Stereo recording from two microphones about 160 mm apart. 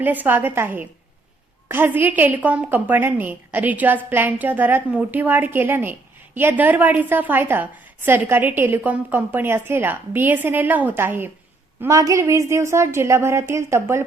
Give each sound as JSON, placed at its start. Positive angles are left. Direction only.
{"t": 0.0, "sound": "a woman's voice", "side_deg": -10}